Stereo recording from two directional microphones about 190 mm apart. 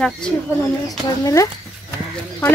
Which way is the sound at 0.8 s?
15° left (ahead or behind).